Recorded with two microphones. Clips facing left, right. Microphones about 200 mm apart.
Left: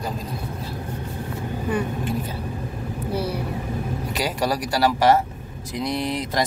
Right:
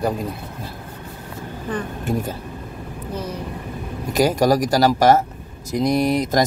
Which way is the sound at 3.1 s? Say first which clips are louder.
Left 3 dB; 10° left (ahead or behind).